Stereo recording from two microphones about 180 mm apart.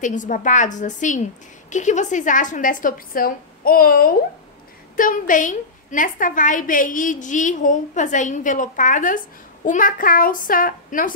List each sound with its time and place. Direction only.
0.0 s a woman's voice: 45° left (ahead or behind)